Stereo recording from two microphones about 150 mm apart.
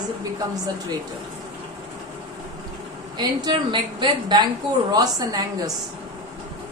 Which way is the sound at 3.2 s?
30° right (ahead or behind).